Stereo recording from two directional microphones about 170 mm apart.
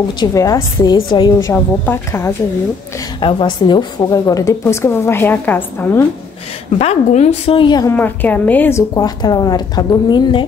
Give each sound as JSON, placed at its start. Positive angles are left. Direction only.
{"t": 0.2, "sound": "a woman's voice", "side_deg": 20}
{"t": 3.2, "sound": "a woman's voice", "side_deg": 30}
{"t": 6.8, "sound": "a woman's voice", "side_deg": 40}
{"t": 7.9, "sound": "a woman's voice", "side_deg": 10}